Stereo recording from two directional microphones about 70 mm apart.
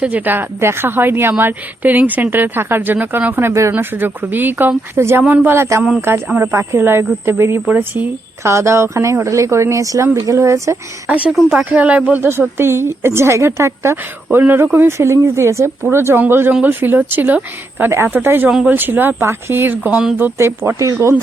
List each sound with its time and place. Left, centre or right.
0.0 s a woman's voice: right
4.9 s speech: right
5.3 s a woman's voice: right
5.5 s a woman's voice: right
8.4 s a woman's voice: right
11.1 s a woman's voice: centre
12.2 s speech: right
14.3 s a woman's voice: right
20.4 s a woman's voice: right